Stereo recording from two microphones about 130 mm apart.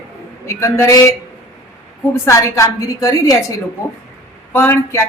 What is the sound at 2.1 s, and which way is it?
A woman's voice, 20° left (ahead or behind).